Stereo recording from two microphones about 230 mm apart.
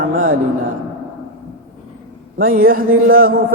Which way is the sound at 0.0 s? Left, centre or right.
Right.